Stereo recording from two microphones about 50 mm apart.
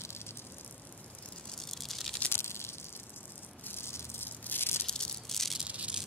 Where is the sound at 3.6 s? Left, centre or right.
Left.